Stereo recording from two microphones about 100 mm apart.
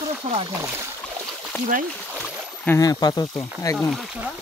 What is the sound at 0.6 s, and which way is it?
Speech, 25° right (ahead or behind).